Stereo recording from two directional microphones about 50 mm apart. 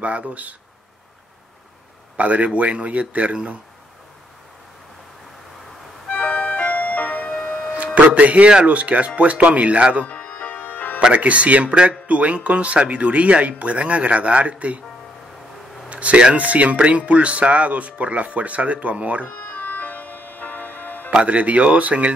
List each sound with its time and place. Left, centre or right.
0.0 s speech: right
2.1 s speech: right
6.0 s music: left
7.7 s speech: right
10.0 s music: left
11.1 s speech: right
15.9 s speech: right
19.2 s music: left
21.1 s speech: right